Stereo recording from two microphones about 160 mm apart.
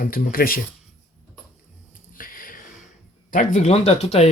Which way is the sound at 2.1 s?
60° left (ahead or behind).